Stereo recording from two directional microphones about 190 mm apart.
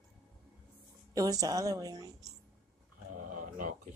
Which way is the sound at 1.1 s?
20° right (ahead or behind).